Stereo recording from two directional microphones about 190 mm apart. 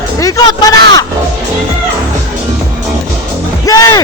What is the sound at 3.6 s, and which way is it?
Music, 20° left (ahead or behind).